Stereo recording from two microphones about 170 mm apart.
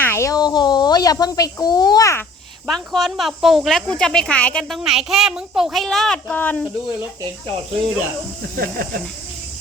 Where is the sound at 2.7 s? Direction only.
Centre (ahead or behind).